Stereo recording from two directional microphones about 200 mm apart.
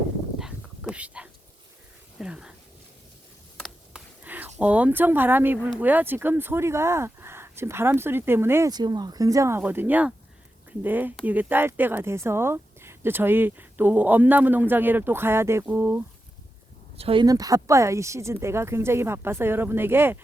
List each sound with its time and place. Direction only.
0.3 s dog: 5° right (ahead or behind)
2.1 s speech: 5° right (ahead or behind)
3.6 s a sound: 5° right (ahead or behind)
5.8 s speech: 10° right (ahead or behind)
17.0 s speech: 25° right (ahead or behind)